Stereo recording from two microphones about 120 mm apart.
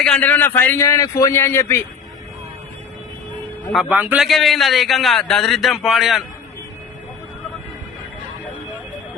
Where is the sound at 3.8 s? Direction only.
15° right (ahead or behind).